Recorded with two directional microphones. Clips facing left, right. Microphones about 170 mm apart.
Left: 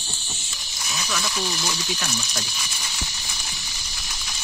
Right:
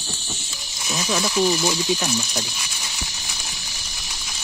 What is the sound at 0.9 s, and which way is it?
Speech, 25° right (ahead or behind).